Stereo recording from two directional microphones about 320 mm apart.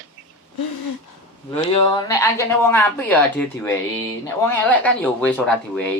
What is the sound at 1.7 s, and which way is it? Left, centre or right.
Speech, centre.